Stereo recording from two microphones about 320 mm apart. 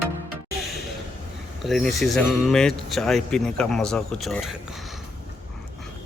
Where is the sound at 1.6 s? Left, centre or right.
Centre.